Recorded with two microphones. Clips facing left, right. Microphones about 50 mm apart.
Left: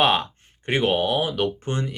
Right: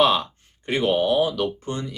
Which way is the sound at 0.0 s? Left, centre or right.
Left.